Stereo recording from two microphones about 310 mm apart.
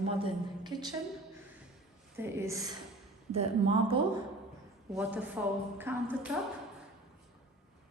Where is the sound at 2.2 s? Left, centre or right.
Centre.